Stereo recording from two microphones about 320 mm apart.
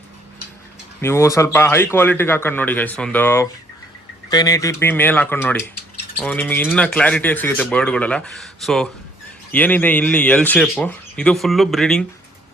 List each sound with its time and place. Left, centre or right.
1.0 s speech: centre